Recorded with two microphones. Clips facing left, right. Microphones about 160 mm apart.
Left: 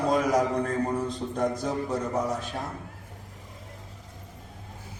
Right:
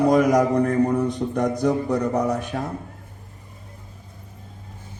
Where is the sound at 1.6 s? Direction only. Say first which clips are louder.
Right 8 dB; 65° right (ahead or behind).